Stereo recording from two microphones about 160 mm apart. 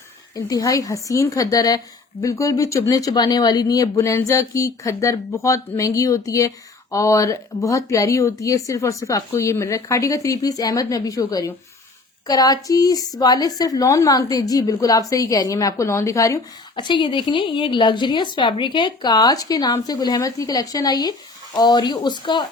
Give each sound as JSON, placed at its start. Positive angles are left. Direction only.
{"t": 0.3, "sound": "a woman's voice", "side_deg": 20}